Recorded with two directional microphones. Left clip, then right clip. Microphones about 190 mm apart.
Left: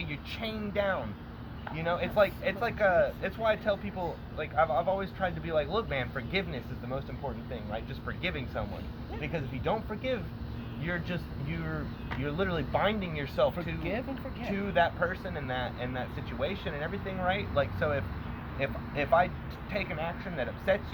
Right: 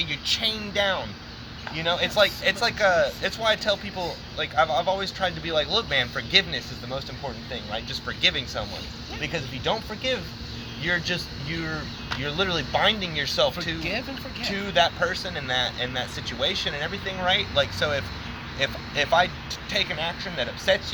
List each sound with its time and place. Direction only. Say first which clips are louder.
0.0 s speech: right 13 dB; 20° right (ahead or behind)
12.2 s speech: right 6 dB; 20° right (ahead or behind)